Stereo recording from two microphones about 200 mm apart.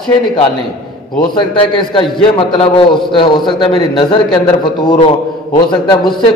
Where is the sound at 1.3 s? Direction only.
25° left (ahead or behind).